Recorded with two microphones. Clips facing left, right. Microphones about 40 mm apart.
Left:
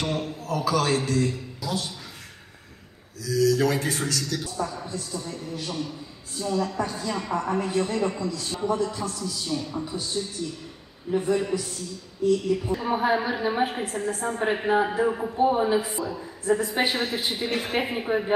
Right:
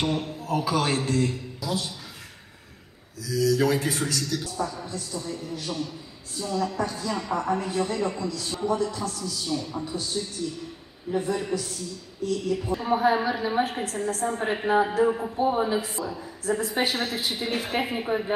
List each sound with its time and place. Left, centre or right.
0.2 s a man's voice: right
1.6 s speech: centre
3.2 s a man's voice: centre
11.1 s a man's voice: centre; by 17.4 s left
17.5 s a woman's voice: left
17.9 s a woman's voice: centre